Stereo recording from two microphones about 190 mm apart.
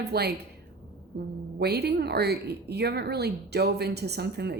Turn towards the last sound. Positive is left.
turn(degrees=-60)  # may be behind; listen again after turning